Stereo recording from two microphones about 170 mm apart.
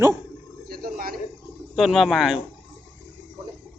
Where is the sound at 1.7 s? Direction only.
Centre (ahead or behind).